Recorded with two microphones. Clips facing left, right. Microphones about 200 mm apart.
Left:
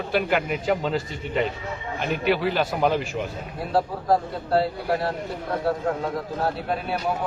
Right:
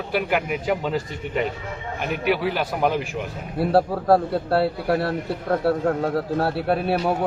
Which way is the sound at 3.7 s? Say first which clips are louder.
Right 4 dB; 65° right (ahead or behind).